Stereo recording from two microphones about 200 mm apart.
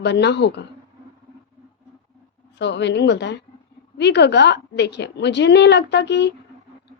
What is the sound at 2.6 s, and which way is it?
A woman's voice, 60° left (ahead or behind).